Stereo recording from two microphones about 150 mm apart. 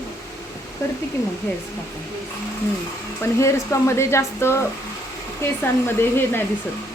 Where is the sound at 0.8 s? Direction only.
20° left (ahead or behind).